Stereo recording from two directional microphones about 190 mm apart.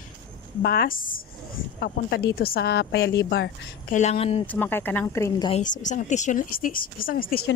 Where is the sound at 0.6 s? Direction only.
55° left (ahead or behind).